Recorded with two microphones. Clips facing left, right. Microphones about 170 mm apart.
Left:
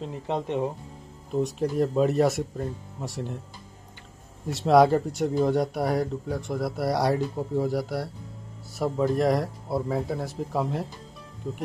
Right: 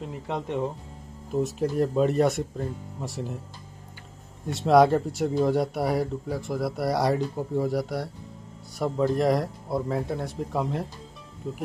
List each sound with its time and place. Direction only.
0.0 s speech: 20° left (ahead or behind)
1.3 s speech: centre (ahead or behind)
4.5 s speech: centre (ahead or behind)